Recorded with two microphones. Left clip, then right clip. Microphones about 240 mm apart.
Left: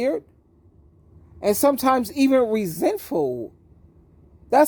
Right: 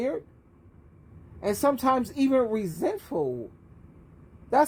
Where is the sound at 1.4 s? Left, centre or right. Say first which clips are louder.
Left 6 dB; left.